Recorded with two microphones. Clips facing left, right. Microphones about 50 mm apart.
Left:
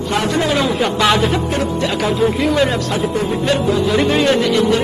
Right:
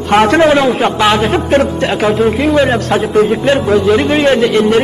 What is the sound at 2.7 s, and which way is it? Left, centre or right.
Speech, right.